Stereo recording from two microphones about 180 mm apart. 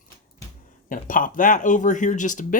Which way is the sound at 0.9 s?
50° left (ahead or behind).